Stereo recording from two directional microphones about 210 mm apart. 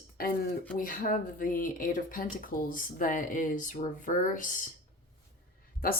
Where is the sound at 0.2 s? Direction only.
45° left (ahead or behind).